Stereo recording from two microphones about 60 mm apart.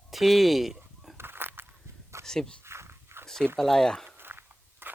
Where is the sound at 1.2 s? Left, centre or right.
Right.